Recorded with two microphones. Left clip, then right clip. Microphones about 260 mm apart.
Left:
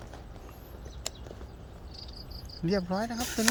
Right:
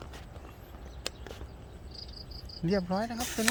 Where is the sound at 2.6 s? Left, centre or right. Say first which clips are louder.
Even; centre.